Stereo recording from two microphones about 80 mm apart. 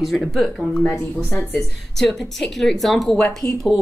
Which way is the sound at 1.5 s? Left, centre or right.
Centre.